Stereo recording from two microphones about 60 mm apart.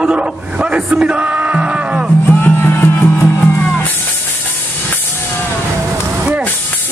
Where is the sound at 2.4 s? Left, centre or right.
Left.